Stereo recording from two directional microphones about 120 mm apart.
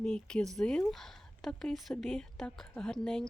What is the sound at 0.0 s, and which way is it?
Speech, 5° left (ahead or behind).